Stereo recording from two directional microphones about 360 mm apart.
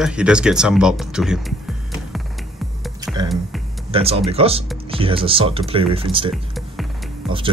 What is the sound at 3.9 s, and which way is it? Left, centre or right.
Speech, centre.